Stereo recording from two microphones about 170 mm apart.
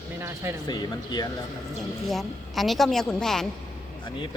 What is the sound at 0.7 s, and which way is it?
Speech, 25° left (ahead or behind).